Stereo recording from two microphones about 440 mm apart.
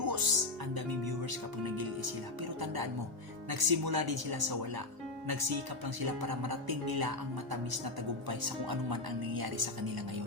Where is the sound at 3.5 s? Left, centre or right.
Right.